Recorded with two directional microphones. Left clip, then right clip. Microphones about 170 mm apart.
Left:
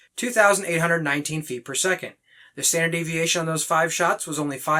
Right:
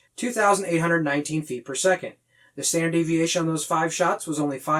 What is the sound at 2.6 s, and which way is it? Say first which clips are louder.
Speech: left 1 dB; 20° left (ahead or behind).